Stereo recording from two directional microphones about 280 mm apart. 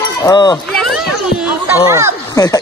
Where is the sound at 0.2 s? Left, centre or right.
Centre.